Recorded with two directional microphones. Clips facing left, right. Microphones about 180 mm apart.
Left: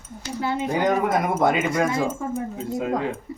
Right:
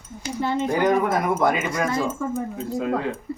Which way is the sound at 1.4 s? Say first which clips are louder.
Left 2 dB; 25° left (ahead or behind).